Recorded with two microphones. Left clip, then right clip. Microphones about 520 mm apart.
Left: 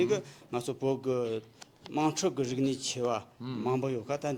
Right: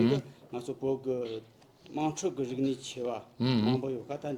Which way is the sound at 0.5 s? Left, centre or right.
Left.